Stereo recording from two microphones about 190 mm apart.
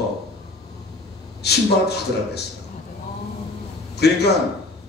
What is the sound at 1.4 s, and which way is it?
A man's voice, 60° left (ahead or behind).